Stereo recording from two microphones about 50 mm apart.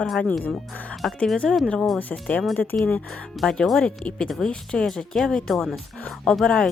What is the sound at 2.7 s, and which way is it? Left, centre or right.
Speech, left.